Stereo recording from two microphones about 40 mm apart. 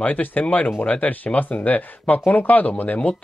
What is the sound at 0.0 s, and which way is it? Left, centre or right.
Speech, left.